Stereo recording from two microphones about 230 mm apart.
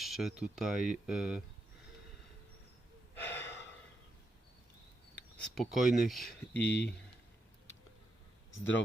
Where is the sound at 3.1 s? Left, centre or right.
Centre.